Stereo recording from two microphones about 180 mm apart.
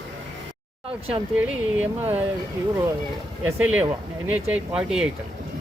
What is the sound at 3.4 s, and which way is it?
Speech, 10° right (ahead or behind).